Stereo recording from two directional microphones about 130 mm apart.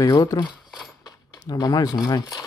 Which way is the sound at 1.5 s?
30° left (ahead or behind).